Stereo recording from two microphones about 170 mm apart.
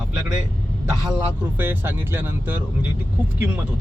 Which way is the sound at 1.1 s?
10° right (ahead or behind).